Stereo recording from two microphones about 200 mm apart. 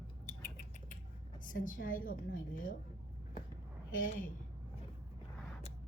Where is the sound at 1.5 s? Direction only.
45° left (ahead or behind).